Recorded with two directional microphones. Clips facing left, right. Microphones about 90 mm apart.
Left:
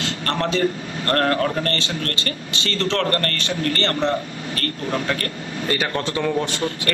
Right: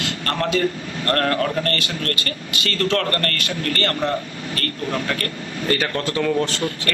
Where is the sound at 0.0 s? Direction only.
25° left (ahead or behind).